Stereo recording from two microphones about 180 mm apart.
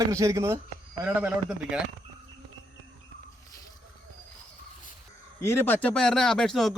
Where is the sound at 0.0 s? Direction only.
20° right (ahead or behind).